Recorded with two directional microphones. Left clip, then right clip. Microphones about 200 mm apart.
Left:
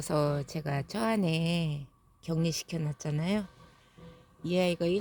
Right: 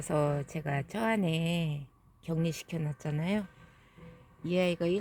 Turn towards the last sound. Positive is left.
turn(degrees=20)  # may be behind; listen again after turning